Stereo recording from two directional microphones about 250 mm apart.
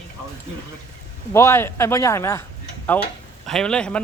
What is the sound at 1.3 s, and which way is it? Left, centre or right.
Speech, centre.